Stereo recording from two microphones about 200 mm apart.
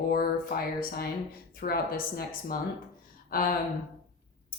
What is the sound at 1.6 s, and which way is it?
Speech, 50° left (ahead or behind).